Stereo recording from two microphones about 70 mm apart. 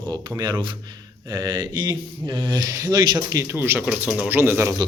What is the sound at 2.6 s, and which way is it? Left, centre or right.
Speech, right.